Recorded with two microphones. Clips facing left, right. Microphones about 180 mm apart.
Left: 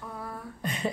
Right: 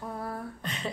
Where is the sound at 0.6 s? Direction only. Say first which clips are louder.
Left 7 dB; 10° left (ahead or behind).